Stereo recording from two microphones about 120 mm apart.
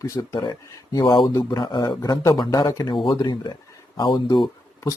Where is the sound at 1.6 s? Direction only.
40° left (ahead or behind).